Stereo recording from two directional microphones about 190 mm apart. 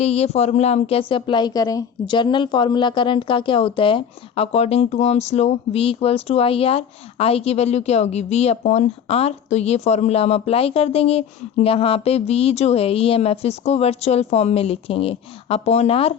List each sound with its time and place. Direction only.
0.0 s speech: 35° left (ahead or behind)